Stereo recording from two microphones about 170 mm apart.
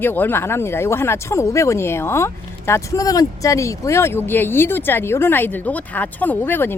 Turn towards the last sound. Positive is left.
turn(degrees=10)  # may be behind; listen again after turning